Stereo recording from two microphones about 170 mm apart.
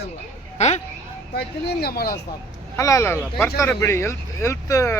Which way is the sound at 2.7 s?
15° left (ahead or behind).